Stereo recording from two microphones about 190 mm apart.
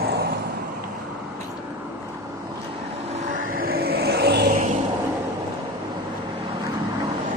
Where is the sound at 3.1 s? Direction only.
45° right (ahead or behind).